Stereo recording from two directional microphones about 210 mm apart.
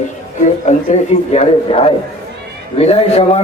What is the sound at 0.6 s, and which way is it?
A man's voice, 30° left (ahead or behind).